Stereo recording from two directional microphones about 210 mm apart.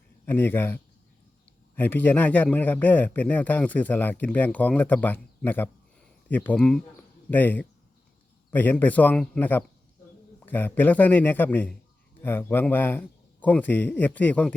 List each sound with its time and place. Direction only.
0.3 s a man's voice: 10° left (ahead or behind)